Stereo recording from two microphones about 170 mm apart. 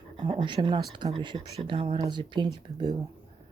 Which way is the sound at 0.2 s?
30° right (ahead or behind).